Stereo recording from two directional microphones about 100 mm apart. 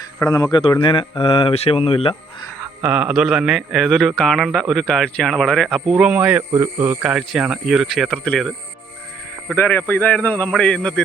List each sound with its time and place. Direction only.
0.3 s speech: 35° left (ahead or behind)
0.6 s speech: 55° left (ahead or behind)
2.8 s speech: 10° right (ahead or behind)
6.0 s speech: 15° right (ahead or behind)
7.0 s speech: 5° right (ahead or behind)
9.6 s a man's voice: 20° left (ahead or behind)